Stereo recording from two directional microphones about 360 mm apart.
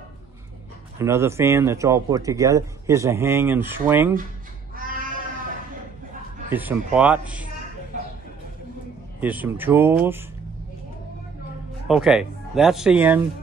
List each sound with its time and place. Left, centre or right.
0.9 s speech: centre
4.7 s a sound: right
6.5 s speech: centre
9.2 s speech: centre
11.9 s speech: centre